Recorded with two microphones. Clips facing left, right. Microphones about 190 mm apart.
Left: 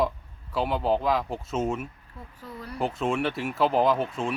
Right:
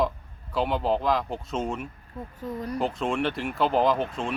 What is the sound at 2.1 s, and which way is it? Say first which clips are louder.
Speech: right 8 dB; 45° right (ahead or behind).